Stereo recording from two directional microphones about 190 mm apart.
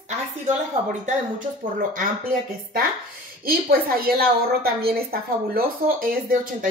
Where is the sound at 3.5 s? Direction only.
50° right (ahead or behind).